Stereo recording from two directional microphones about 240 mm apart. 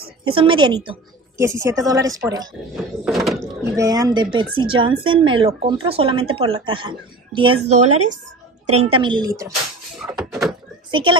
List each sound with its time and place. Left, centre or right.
0.3 s a woman's voice: right
2.7 s a sound: centre
3.7 s speech: centre
7.9 s speech: right
8.7 s speech: right
10.0 s a sound: centre
10.9 s a child's voice: right